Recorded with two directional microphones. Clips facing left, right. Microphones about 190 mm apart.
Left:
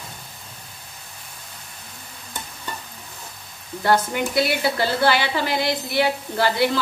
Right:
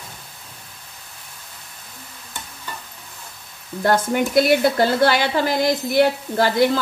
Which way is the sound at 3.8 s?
50° right (ahead or behind).